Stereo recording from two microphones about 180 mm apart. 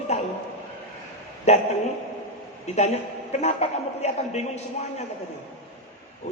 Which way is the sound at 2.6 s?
35° left (ahead or behind).